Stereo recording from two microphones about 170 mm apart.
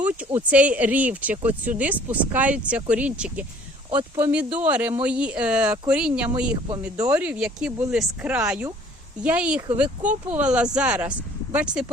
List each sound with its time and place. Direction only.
0.0 s speech: 10° right (ahead or behind)
3.8 s speech: 30° right (ahead or behind)
4.2 s speech: 10° right (ahead or behind)